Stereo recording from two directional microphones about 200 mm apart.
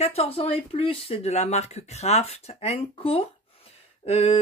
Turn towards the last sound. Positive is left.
turn(degrees=30)  # may be behind; listen again after turning